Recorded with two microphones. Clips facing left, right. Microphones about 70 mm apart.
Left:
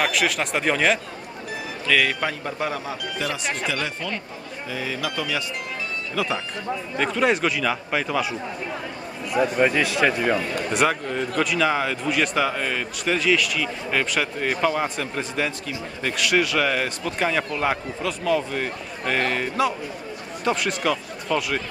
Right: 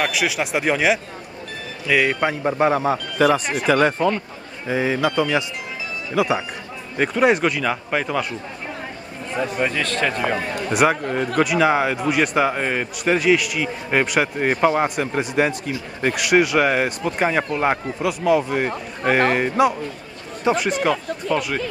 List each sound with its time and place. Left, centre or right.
0.0 s speech: centre; by 3.0 s right
3.6 s speech: right
4.6 s speech: right
6.1 s speech: centre
7.2 s speech: centre
9.3 s a man's voice: centre
10.7 s speech: centre
11.1 s a man's voice: right
11.4 s speech: centre; by 14.9 s right
15.0 s speech: centre
20.5 s speech: centre